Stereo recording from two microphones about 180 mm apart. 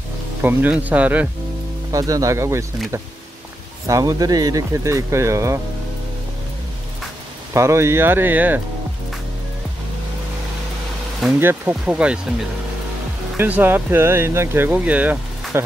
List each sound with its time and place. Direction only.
0.4 s speech: 10° right (ahead or behind)
1.9 s speech: 20° right (ahead or behind)
3.8 s speech: 20° right (ahead or behind)
7.5 s speech: 15° right (ahead or behind)
11.2 s speech: 10° right (ahead or behind)
13.4 s speech: 10° right (ahead or behind)